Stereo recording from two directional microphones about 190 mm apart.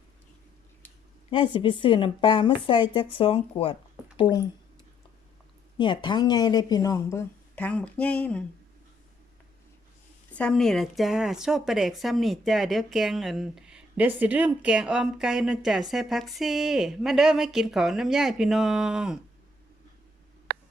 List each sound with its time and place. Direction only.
1.3 s speech: 25° left (ahead or behind)
5.7 s speech: 25° left (ahead or behind); by 8.4 s 5° left (ahead or behind)
10.3 s a woman's voice: 5° left (ahead or behind)